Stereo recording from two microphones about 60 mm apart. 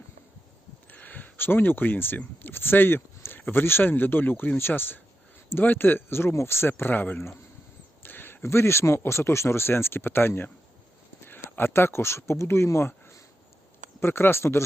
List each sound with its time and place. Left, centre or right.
0.9 s speech: left